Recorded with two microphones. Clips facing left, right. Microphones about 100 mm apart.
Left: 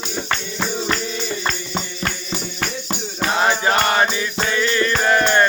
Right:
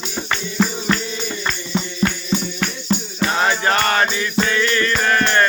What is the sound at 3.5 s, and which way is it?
Music, 15° left (ahead or behind).